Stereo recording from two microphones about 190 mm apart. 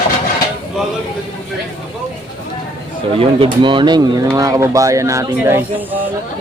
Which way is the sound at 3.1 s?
30° right (ahead or behind).